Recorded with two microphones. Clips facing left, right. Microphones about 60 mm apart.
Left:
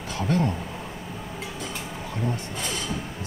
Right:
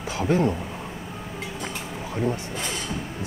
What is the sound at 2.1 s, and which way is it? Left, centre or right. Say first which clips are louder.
Speech: right 4 dB; centre.